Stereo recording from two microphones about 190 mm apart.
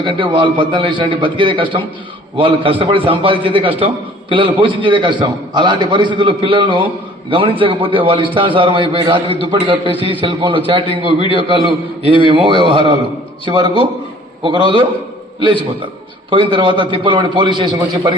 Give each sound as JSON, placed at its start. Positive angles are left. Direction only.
{"t": 0.0, "sound": "a man's voice", "side_deg": -25}